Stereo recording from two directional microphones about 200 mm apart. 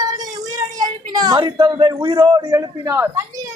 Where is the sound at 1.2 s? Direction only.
20° right (ahead or behind).